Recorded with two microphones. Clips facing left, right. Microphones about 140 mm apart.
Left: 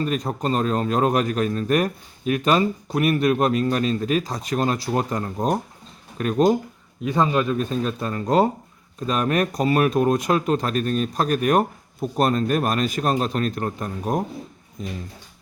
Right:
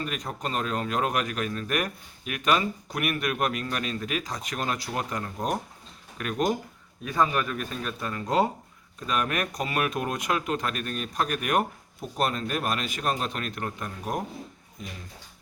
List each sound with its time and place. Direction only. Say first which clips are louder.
0.0 s speech: left 8 dB; 35° left (ahead or behind)
7.0 s a man's voice: left 5 dB; 25° left (ahead or behind)